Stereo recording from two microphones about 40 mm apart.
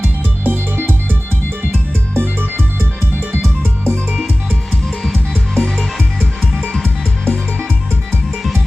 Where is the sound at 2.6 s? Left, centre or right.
Right.